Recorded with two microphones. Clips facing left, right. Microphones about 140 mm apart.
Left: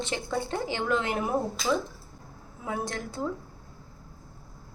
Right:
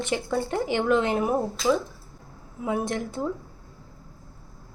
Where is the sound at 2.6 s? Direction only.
20° right (ahead or behind).